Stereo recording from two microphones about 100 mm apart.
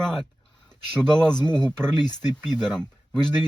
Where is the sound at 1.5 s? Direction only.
10° left (ahead or behind).